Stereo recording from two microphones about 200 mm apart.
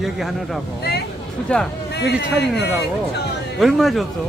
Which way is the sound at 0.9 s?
50° left (ahead or behind).